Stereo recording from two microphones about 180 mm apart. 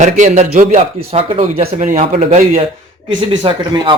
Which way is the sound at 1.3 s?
35° right (ahead or behind).